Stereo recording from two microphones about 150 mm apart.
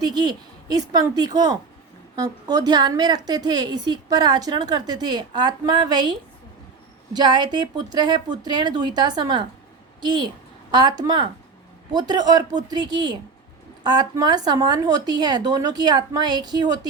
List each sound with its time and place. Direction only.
0.0 s a woman's voice: 30° right (ahead or behind)